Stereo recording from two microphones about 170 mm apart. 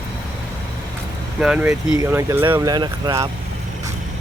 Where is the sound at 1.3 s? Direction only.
5° right (ahead or behind); by 3.3 s 25° right (ahead or behind).